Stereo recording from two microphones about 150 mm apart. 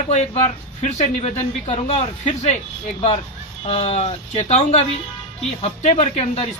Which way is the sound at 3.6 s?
40° left (ahead or behind).